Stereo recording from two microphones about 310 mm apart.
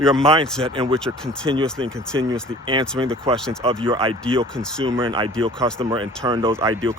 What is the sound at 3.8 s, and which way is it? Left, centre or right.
Speech, centre.